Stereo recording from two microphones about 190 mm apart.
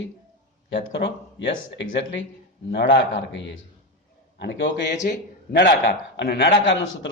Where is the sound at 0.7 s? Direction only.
65° left (ahead or behind).